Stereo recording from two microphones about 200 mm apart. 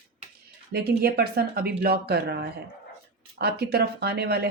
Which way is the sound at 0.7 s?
50° right (ahead or behind).